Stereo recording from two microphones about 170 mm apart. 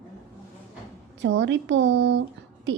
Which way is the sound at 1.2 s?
90° right.